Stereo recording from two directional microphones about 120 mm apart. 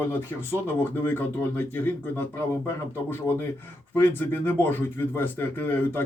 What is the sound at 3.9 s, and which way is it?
A man's voice, 15° left (ahead or behind).